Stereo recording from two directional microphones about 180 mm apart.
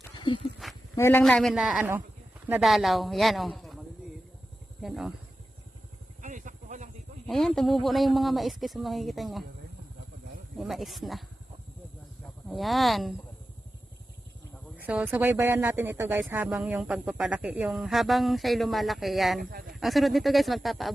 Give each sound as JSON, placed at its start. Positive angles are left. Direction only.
{"t": 0.2, "sound": "speech", "side_deg": 25}
{"t": 0.9, "sound": "speech", "side_deg": 15}
{"t": 1.2, "sound": "a man's voice", "side_deg": 0}
{"t": 6.2, "sound": "a sound", "side_deg": -45}
{"t": 7.3, "sound": "speech", "side_deg": 0}
{"t": 10.6, "sound": "speech", "side_deg": 0}
{"t": 12.5, "sound": "speech", "side_deg": 0}
{"t": 14.8, "sound": "speech", "side_deg": -10}
{"t": 19.4, "sound": "speech", "side_deg": -55}
{"t": 19.7, "sound": "speech", "side_deg": 0}